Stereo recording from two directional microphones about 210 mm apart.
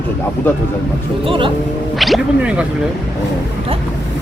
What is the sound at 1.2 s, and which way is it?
Speech, 25° right (ahead or behind).